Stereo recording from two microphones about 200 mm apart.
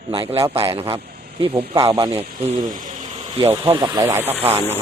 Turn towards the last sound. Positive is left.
turn(degrees=-10)  # may be behind; listen again after turning